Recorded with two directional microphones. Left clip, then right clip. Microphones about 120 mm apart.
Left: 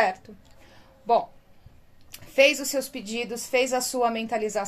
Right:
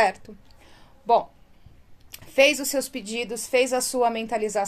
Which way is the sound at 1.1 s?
35° right (ahead or behind).